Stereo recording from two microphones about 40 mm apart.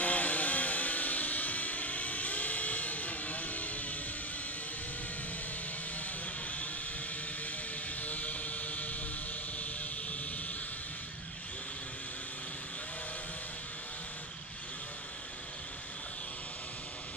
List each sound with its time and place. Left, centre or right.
0.0 s vehicle: left
8.0 s music: left